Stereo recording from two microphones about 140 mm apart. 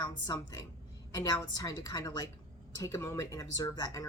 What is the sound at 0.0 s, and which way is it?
Speech, 25° left (ahead or behind).